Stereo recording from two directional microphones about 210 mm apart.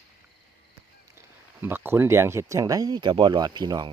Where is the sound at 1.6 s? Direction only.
10° right (ahead or behind).